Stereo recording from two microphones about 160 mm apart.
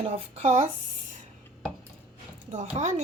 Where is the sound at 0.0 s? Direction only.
45° right (ahead or behind).